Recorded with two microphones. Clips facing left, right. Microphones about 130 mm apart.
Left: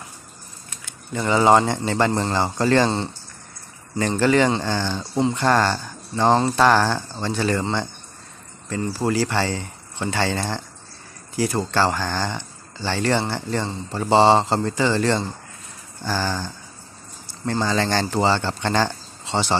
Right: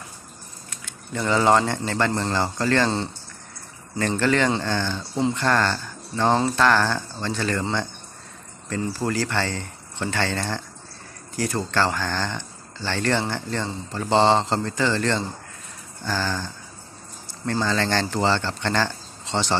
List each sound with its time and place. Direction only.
0.8 s speech: 10° left (ahead or behind)
4.2 s speech: 10° left (ahead or behind)
9.0 s speech: 10° left (ahead or behind)
17.5 s speech: 10° left (ahead or behind)